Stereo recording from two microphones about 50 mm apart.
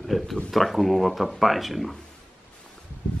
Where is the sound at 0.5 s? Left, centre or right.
Centre.